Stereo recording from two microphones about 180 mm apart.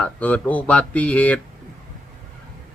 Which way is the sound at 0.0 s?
10° left (ahead or behind).